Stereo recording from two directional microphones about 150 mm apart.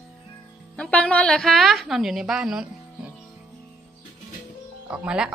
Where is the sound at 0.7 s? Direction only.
5° left (ahead or behind).